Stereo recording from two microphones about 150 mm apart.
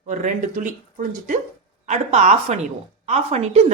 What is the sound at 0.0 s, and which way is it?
Speech, 55° right (ahead or behind).